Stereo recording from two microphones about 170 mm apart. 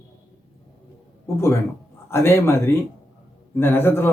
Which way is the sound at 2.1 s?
15° left (ahead or behind).